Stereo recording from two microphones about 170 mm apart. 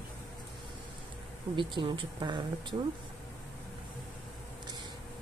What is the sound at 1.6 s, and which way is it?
Speech, 25° right (ahead or behind).